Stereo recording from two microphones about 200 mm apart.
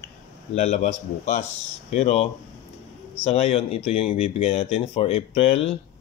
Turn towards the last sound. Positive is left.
turn(degrees=30)  # may be behind; listen again after turning